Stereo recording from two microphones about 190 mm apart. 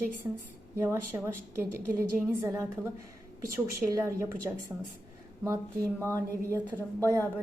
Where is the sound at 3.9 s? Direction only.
15° right (ahead or behind).